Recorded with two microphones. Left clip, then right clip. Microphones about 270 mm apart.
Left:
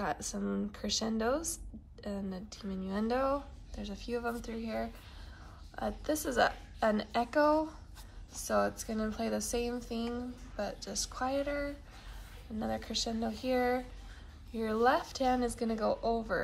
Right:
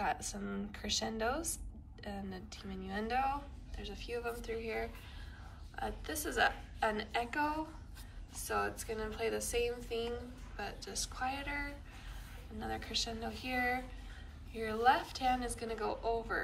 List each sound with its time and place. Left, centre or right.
0.0 s speech: centre
8.4 s speech: centre